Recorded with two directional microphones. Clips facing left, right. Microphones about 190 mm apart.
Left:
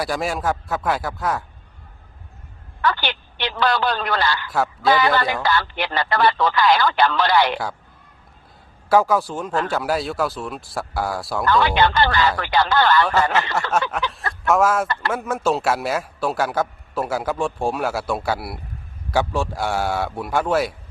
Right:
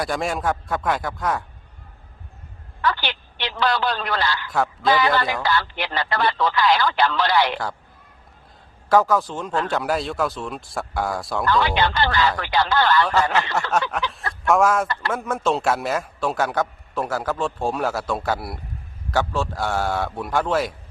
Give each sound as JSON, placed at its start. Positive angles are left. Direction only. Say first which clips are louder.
{"t": 0.0, "sound": "speech", "louder": "left 1 dB", "side_deg": 5}
{"t": 2.8, "sound": "speech", "louder": "left 2 dB", "side_deg": 50}
{"t": 4.5, "sound": "a man's voice", "louder": "left 1 dB", "side_deg": 5}
{"t": 5.4, "sound": "speech", "louder": "left 2 dB", "side_deg": 50}
{"t": 8.9, "sound": "speech", "louder": "left 1 dB", "side_deg": 10}
{"t": 11.4, "sound": "speech", "louder": "left 3 dB", "side_deg": 55}
{"t": 13.1, "sound": "a man's voice", "louder": "left 1 dB", "side_deg": 5}